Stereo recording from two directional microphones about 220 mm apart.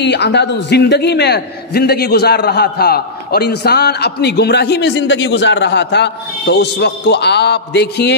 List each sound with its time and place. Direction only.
0.0 s a man's voice: 50° left (ahead or behind)